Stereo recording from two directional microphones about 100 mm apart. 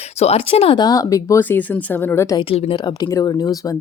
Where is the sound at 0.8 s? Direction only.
40° left (ahead or behind).